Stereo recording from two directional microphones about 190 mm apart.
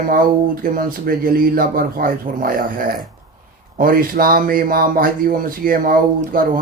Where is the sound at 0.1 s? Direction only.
50° right (ahead or behind).